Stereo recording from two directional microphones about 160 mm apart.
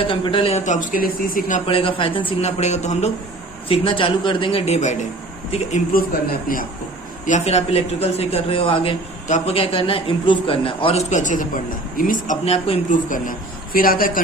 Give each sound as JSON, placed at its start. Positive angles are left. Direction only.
{"t": 0.0, "sound": "a man's voice", "side_deg": 35}
{"t": 0.6, "sound": "speech", "side_deg": 50}
{"t": 1.6, "sound": "a man's voice", "side_deg": 35}
{"t": 3.7, "sound": "a man's voice", "side_deg": 35}
{"t": 6.5, "sound": "speech", "side_deg": 60}
{"t": 7.3, "sound": "a man's voice", "side_deg": 45}
{"t": 11.1, "sound": "speech", "side_deg": 50}